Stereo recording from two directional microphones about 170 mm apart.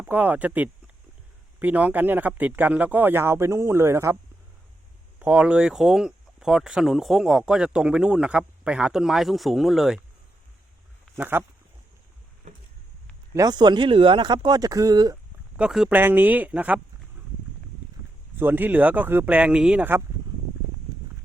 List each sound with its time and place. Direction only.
0.0 s speech: 10° right (ahead or behind)
5.2 s speech: 5° right (ahead or behind)
11.2 s speech: 10° right (ahead or behind)
13.3 s speech: 20° right (ahead or behind)
15.5 s speech: 5° right (ahead or behind)
18.3 s speech: 10° right (ahead or behind)